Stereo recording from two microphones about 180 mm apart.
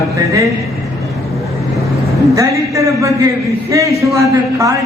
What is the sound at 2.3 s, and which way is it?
A man's voice, 15° right (ahead or behind).